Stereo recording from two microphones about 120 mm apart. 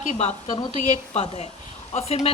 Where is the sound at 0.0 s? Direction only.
70° left (ahead or behind).